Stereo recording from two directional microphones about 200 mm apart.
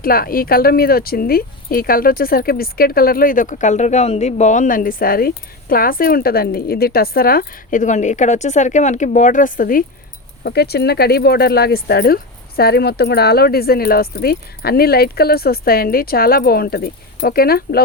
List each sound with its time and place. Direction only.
0.0 s speech: 45° left (ahead or behind)